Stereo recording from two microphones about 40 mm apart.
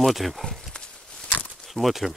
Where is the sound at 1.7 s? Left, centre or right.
Centre.